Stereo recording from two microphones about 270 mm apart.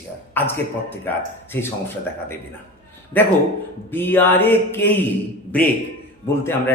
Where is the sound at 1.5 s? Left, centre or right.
Centre.